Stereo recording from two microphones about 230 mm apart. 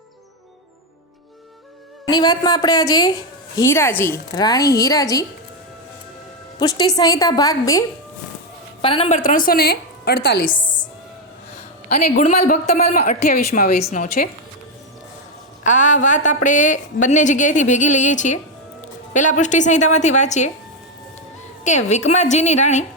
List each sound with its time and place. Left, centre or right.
2.0 s a woman's voice: centre
6.6 s a woman's voice: centre; by 10.8 s left
12.0 s a woman's voice: left
15.6 s a woman's voice: left
21.6 s a woman's voice: left